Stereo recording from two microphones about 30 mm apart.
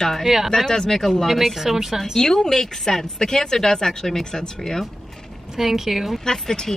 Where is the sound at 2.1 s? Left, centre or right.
Centre.